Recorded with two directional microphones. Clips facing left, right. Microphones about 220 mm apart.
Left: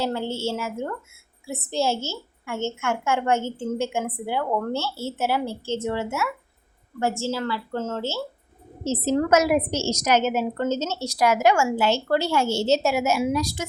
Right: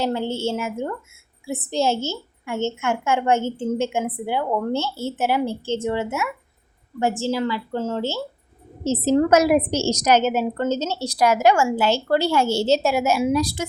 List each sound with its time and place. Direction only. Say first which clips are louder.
0.0 s a woman's voice: right 3 dB; 15° right (ahead or behind)
8.8 s a woman's voice: right 4 dB; 35° right (ahead or behind)